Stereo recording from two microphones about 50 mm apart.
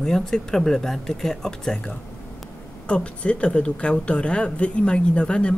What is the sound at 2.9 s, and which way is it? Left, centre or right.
Speech, left.